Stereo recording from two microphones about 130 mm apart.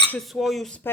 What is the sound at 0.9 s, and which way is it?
Speech, 15° left (ahead or behind).